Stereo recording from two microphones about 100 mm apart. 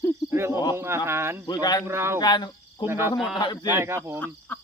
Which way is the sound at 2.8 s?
25° right (ahead or behind).